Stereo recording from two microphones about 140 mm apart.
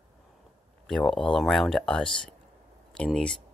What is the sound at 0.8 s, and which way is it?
Speech, 5° left (ahead or behind).